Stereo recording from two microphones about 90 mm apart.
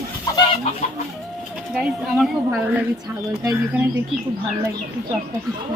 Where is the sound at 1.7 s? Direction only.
5° right (ahead or behind).